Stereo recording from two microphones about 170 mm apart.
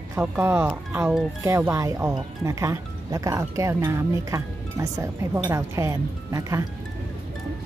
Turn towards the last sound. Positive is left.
turn(degrees=-20)  # may be behind; listen again after turning